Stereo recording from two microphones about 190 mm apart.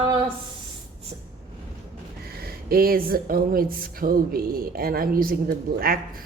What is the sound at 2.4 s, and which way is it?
Speech, 55° right (ahead or behind).